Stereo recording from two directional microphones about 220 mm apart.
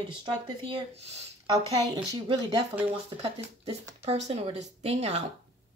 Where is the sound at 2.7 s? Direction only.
5° right (ahead or behind).